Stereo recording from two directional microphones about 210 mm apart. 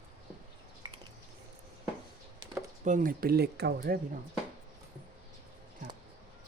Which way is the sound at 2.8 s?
40° right (ahead or behind).